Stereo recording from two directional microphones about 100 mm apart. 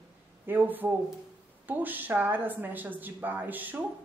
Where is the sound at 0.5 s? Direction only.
20° right (ahead or behind).